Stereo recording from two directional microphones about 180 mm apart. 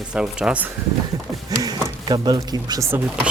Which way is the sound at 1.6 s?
20° right (ahead or behind).